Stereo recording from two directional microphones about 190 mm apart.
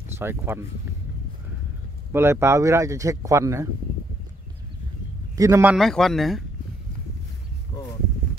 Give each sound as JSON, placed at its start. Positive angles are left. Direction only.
{"t": 0.2, "sound": "speech", "side_deg": -10}
{"t": 2.1, "sound": "speech", "side_deg": -15}
{"t": 5.4, "sound": "speech", "side_deg": -10}
{"t": 5.8, "sound": "speech", "side_deg": 0}